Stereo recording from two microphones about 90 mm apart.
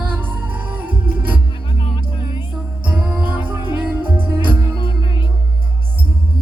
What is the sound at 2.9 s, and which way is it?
Music, 15° right (ahead or behind).